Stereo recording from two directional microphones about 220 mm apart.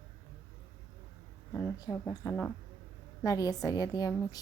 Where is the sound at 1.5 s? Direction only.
15° left (ahead or behind).